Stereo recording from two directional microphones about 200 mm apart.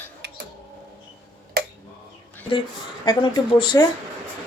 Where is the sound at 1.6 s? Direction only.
50° right (ahead or behind).